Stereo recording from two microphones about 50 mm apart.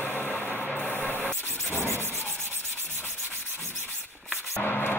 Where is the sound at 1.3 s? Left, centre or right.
Left.